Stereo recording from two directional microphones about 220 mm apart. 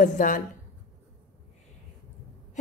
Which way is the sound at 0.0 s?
35° left (ahead or behind).